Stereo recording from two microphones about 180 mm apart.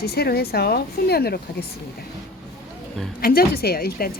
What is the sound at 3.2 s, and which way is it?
Speech, 55° left (ahead or behind).